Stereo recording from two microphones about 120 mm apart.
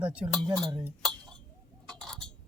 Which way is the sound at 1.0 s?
5° left (ahead or behind).